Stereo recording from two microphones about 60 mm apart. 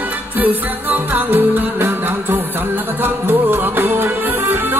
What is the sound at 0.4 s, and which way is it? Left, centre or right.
Music, right.